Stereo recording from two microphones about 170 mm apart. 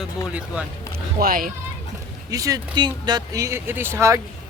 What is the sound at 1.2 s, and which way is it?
Speech, 60° right (ahead or behind).